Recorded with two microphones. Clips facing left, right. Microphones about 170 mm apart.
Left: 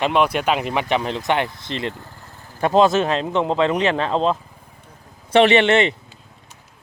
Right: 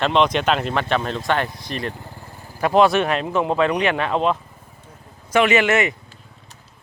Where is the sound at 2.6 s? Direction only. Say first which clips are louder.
Even; 20° left (ahead or behind).